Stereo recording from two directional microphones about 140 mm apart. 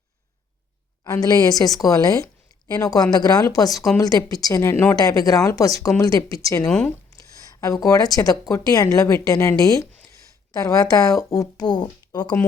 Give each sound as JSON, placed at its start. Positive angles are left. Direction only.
{"t": 1.0, "sound": "speech", "side_deg": 25}
{"t": 6.7, "sound": "speech", "side_deg": 5}
{"t": 7.1, "sound": "speech", "side_deg": 25}